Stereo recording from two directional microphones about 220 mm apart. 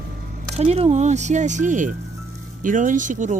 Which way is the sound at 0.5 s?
30° right (ahead or behind).